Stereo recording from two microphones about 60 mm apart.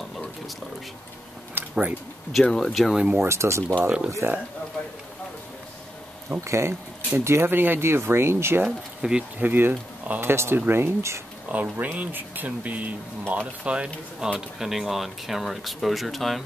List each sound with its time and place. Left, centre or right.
1.5 s a sound: right
2.5 s speech: centre
3.2 s speech: right
4.2 s speech: right
6.4 s speech: right
8.6 s speech: centre
9.4 s speech: right
10.2 s speech: right
11.5 s speech: right
14.6 s speech: centre